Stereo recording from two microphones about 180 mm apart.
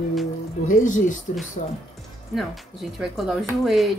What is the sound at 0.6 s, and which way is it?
Speech, 45° left (ahead or behind).